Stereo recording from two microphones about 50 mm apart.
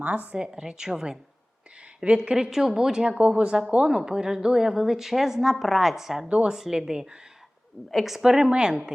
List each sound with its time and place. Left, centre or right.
0.0 s speech: right
0.3 s a woman's voice: centre
3.1 s a woman's voice: right; by 6.2 s centre
6.2 s a woman's voice: centre
6.6 s a woman's voice: centre